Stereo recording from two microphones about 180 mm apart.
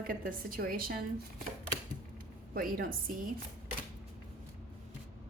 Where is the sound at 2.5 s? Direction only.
55° right (ahead or behind).